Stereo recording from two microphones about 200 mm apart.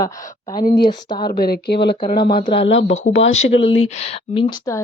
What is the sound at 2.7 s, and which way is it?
Speech, 65° left (ahead or behind).